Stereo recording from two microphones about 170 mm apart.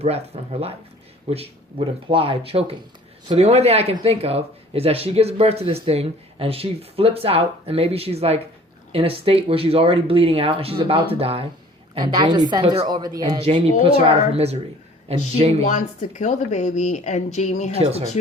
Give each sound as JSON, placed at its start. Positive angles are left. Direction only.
{"t": 0.0, "sound": "a woman's voice", "side_deg": -35}
{"t": 14.3, "sound": "speech", "side_deg": -35}
{"t": 15.6, "sound": "a woman's voice", "side_deg": 45}
{"t": 17.7, "sound": "speech", "side_deg": -35}